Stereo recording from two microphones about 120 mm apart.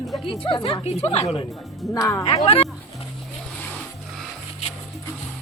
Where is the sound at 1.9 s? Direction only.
25° left (ahead or behind).